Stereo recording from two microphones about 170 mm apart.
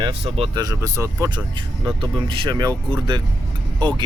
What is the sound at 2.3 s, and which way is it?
Speech, 25° right (ahead or behind).